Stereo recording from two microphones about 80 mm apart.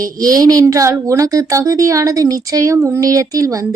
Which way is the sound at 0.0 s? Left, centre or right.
Right.